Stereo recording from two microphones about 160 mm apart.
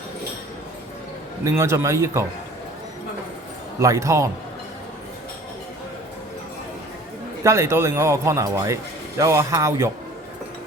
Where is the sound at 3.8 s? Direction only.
20° right (ahead or behind).